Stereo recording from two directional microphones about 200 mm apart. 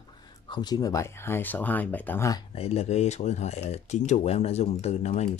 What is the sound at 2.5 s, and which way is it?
Speech, 30° left (ahead or behind).